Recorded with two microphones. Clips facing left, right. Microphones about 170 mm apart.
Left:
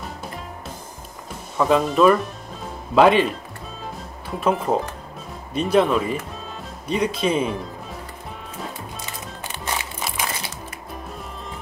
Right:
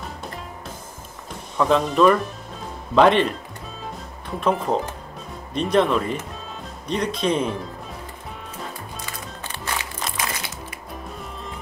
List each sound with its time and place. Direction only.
1.6 s speech: 5° left (ahead or behind)
4.4 s speech: 5° left (ahead or behind)
9.5 s music: 20° left (ahead or behind)
9.9 s a sound: 10° left (ahead or behind)